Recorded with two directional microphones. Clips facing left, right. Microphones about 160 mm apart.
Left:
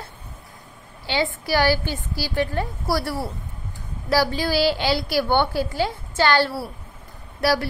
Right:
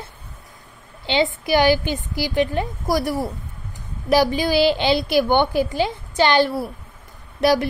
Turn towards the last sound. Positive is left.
turn(degrees=-20)  # may be behind; listen again after turning